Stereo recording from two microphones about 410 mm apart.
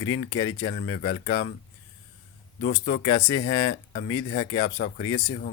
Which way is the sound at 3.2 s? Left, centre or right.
Centre.